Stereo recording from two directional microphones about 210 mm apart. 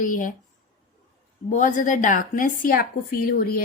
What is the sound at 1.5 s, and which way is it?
Speech, 35° left (ahead or behind).